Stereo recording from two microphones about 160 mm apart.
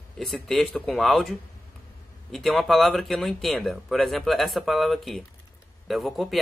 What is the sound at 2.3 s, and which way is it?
Speech, centre (ahead or behind).